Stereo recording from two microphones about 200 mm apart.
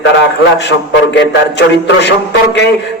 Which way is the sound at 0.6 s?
60° left (ahead or behind).